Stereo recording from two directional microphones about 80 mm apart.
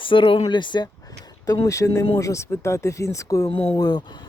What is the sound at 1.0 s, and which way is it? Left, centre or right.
Speech, left.